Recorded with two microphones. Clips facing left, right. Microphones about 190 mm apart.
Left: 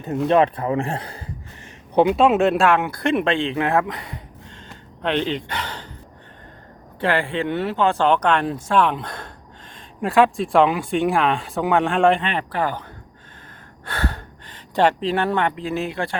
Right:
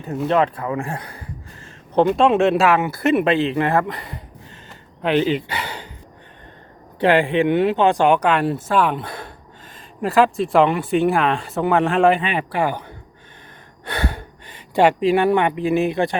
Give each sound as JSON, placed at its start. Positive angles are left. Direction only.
{"t": 0.3, "sound": "speech", "side_deg": 20}
{"t": 1.6, "sound": "speech", "side_deg": 10}
{"t": 7.0, "sound": "speech", "side_deg": -15}